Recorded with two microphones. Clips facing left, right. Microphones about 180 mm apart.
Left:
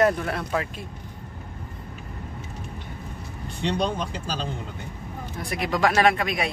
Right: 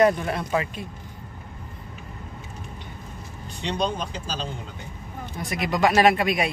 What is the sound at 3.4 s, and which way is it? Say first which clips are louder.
Speech: left 1 dB; 55° left (ahead or behind).